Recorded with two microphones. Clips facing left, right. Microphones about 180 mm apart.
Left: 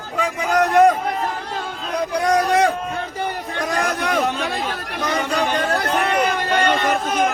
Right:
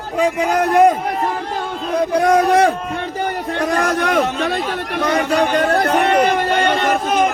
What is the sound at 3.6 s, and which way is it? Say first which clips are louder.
A man's voice: right 5 dB; 60° right (ahead or behind).